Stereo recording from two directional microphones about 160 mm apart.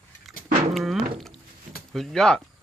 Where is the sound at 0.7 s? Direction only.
Centre (ahead or behind).